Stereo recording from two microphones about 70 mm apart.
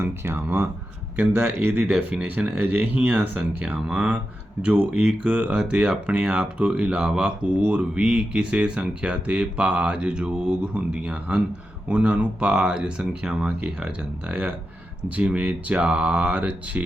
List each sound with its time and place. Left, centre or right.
0.0 s speech: right